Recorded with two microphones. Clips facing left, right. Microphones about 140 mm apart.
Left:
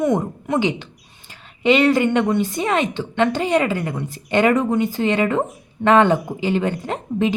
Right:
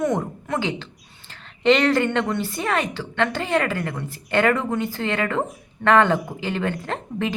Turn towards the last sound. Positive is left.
turn(degrees=15)  # may be behind; listen again after turning